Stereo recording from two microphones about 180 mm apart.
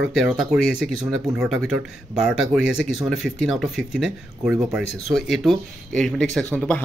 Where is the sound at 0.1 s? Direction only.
Centre (ahead or behind).